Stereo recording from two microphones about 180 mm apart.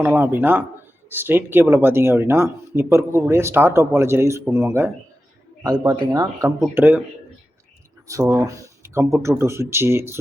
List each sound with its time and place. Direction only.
0.0 s speech: 10° right (ahead or behind)
8.0 s speech: 15° right (ahead or behind)